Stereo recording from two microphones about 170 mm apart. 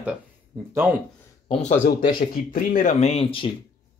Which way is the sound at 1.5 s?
45° left (ahead or behind).